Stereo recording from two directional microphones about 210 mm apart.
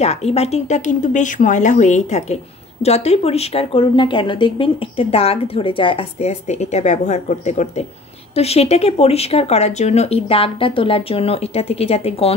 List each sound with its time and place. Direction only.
0.0 s a woman's voice: 30° left (ahead or behind)